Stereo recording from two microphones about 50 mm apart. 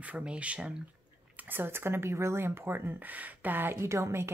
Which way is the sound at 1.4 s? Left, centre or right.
Right.